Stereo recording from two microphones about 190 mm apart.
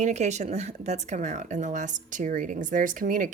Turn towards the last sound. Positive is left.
turn(degrees=-45)  # may be behind; listen again after turning